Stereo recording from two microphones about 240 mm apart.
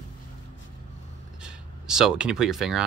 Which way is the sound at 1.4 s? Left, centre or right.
Centre.